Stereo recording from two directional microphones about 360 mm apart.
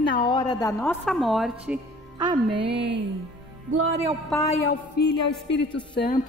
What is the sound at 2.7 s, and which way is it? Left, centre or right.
Speech, right.